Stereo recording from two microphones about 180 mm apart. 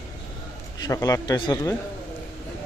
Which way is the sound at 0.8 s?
20° left (ahead or behind).